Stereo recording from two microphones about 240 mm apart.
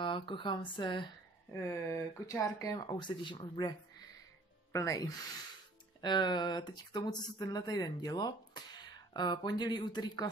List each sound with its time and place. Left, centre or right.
0.0 s speech: left
4.7 s speech: centre